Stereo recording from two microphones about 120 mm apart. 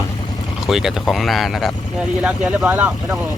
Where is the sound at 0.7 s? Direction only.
Centre (ahead or behind).